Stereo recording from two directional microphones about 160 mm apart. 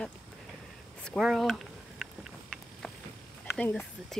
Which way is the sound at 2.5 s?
Centre (ahead or behind).